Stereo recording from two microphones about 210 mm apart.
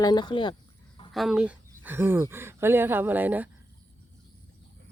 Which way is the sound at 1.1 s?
Centre (ahead or behind).